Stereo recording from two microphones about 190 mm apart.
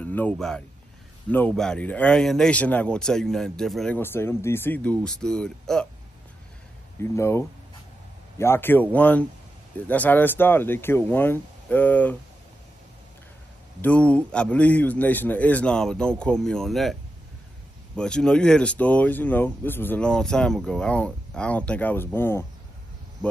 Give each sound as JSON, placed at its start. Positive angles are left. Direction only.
{"t": 0.0, "sound": "speech", "side_deg": 10}
{"t": 7.0, "sound": "speech", "side_deg": 15}
{"t": 13.7, "sound": "speech", "side_deg": 5}
{"t": 17.9, "sound": "speech", "side_deg": 5}